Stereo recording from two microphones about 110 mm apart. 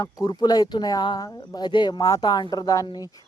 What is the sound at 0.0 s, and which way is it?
Speech, 35° left (ahead or behind).